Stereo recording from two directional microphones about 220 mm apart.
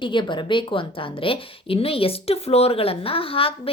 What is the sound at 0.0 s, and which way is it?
A woman's voice, 20° left (ahead or behind).